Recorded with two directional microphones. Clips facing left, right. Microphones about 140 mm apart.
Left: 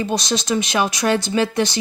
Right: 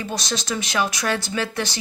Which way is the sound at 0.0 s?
20° left (ahead or behind).